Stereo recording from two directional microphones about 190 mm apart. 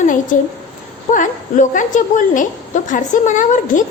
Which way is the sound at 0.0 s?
45° left (ahead or behind).